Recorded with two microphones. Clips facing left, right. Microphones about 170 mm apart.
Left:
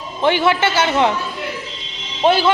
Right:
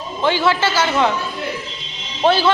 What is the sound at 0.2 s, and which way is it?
Speech, 25° left (ahead or behind).